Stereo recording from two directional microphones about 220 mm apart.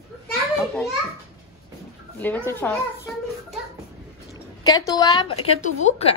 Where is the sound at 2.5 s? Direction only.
10° left (ahead or behind).